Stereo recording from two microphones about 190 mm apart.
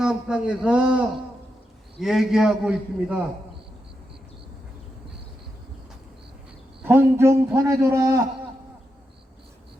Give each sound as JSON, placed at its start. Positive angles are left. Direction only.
{"t": 0.0, "sound": "a man's voice", "side_deg": -5}
{"t": 6.8, "sound": "a man's voice", "side_deg": -10}